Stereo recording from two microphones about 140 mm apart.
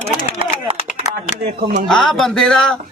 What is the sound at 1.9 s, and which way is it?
Speech, 5° left (ahead or behind).